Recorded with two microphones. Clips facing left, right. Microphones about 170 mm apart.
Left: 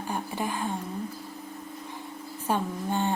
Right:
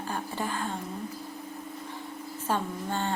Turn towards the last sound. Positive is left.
turn(degrees=15)  # may be behind; listen again after turning